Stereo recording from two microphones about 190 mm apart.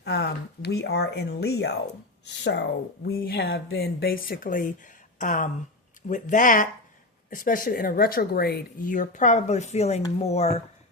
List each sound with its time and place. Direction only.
0.0 s speech: 60° left (ahead or behind); by 10.6 s 35° left (ahead or behind)